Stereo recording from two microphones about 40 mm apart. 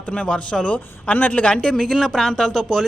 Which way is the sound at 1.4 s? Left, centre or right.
Left.